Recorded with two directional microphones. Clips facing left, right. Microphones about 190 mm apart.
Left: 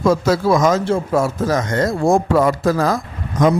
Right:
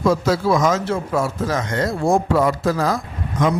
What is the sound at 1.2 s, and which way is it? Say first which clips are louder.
Speech: left 3 dB; 45° left (ahead or behind).